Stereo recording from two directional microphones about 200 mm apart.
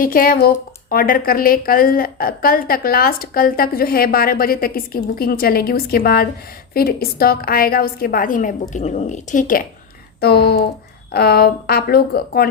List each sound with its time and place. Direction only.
0.0 s a woman's voice: 45° left (ahead or behind)
10.2 s a woman's voice: 50° left (ahead or behind)